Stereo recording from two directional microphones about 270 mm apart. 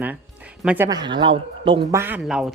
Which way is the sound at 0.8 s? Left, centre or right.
Centre.